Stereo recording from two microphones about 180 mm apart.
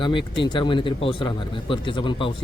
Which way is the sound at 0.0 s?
25° left (ahead or behind).